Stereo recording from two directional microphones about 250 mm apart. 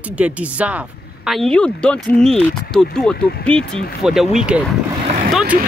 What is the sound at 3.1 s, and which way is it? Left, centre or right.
Speech, left.